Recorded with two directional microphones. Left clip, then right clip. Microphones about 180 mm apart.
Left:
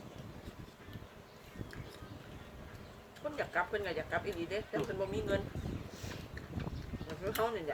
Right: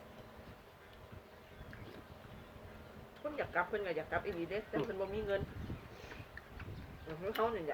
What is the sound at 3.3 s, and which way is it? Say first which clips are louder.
Speech: left 1 dB; 30° left (ahead or behind).